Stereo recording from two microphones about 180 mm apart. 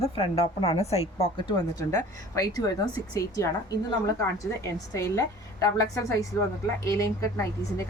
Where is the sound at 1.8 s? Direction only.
20° left (ahead or behind).